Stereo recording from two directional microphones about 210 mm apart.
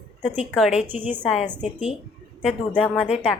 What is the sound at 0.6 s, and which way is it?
Speech, 5° right (ahead or behind).